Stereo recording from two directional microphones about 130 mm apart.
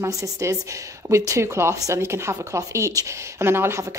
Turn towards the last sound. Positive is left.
turn(degrees=-20)  # may be behind; listen again after turning